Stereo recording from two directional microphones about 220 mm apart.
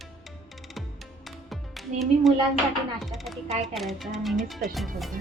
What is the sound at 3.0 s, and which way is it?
Speech, centre (ahead or behind).